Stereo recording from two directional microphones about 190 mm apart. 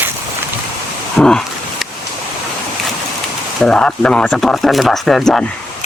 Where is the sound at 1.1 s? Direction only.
5° left (ahead or behind).